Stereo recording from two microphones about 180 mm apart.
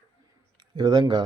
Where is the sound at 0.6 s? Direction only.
20° right (ahead or behind).